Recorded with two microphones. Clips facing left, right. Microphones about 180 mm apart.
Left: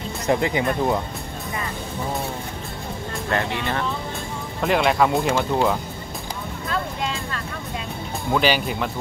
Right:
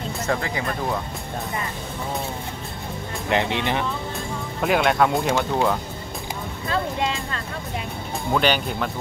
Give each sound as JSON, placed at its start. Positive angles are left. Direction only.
{"t": 0.3, "sound": "speech", "side_deg": 20}
{"t": 3.3, "sound": "speech", "side_deg": -20}
{"t": 4.6, "sound": "speech", "side_deg": 0}
{"t": 8.3, "sound": "speech", "side_deg": 5}